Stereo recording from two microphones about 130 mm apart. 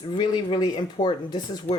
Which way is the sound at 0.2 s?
30° left (ahead or behind).